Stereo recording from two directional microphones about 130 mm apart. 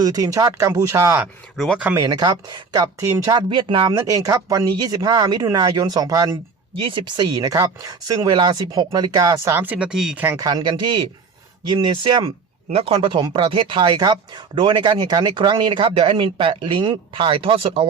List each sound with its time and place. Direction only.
0.0 s speech: 30° right (ahead or behind)
6.7 s speech: 40° right (ahead or behind); by 10.3 s 10° right (ahead or behind)
10.3 s speech: 30° right (ahead or behind)